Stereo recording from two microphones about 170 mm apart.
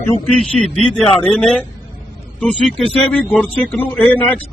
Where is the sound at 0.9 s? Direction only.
5° left (ahead or behind).